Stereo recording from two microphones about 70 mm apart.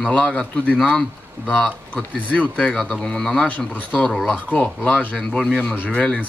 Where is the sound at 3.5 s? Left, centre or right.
Left.